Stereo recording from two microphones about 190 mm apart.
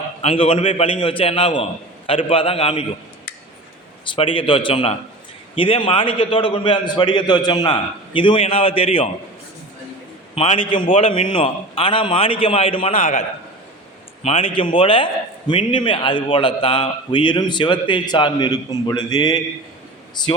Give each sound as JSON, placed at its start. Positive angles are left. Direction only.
{"t": 0.2, "sound": "a man's voice", "side_deg": 30}
{"t": 4.0, "sound": "a man's voice", "side_deg": 25}
{"t": 10.3, "sound": "a man's voice", "side_deg": 30}
{"t": 13.0, "sound": "a man's voice", "side_deg": 45}
{"t": 14.2, "sound": "a man's voice", "side_deg": 30}